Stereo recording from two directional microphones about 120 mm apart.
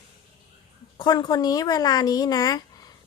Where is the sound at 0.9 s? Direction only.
40° left (ahead or behind).